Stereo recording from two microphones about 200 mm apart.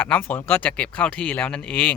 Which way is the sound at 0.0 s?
10° left (ahead or behind).